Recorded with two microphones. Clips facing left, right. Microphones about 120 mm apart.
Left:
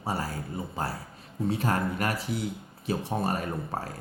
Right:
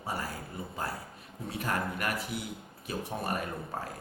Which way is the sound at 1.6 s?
30° left (ahead or behind).